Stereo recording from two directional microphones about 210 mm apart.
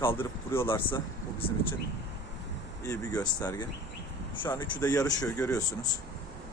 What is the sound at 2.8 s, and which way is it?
Speech, 15° left (ahead or behind).